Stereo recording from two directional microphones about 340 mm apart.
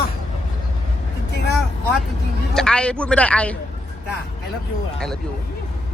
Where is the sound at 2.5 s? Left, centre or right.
Centre.